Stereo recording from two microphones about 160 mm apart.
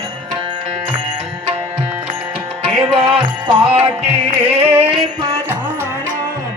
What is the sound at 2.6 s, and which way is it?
Music, 30° right (ahead or behind).